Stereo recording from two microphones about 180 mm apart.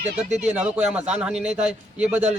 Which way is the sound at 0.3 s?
40° right (ahead or behind).